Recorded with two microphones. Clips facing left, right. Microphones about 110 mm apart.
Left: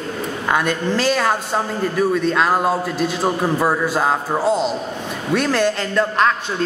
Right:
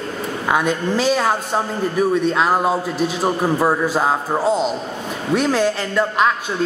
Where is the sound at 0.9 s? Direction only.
5° right (ahead or behind).